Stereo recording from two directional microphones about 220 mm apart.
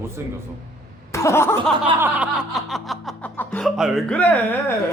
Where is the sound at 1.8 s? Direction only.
10° right (ahead or behind).